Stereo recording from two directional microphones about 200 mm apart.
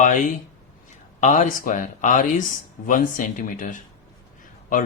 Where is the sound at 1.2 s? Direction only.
40° left (ahead or behind).